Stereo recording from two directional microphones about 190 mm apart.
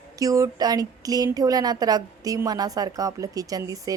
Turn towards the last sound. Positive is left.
turn(degrees=-20)  # may be behind; listen again after turning